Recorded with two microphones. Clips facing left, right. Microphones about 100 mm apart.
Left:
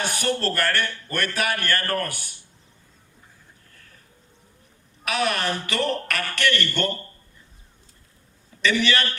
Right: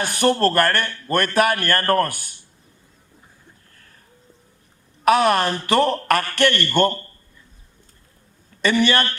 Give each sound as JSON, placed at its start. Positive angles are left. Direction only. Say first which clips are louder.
{"t": 0.2, "sound": "speech", "louder": "right 10 dB", "side_deg": -45}
{"t": 5.0, "sound": "speech", "louder": "right 8 dB", "side_deg": -45}
{"t": 8.6, "sound": "speech", "louder": "right 4 dB", "side_deg": -45}